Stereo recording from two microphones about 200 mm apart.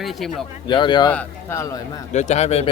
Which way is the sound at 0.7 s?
20° left (ahead or behind).